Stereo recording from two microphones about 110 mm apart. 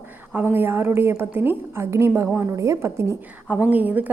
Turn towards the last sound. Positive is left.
turn(degrees=-15)  # may be behind; listen again after turning